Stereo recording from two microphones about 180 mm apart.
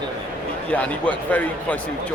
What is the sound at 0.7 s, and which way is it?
Speech, 5° left (ahead or behind).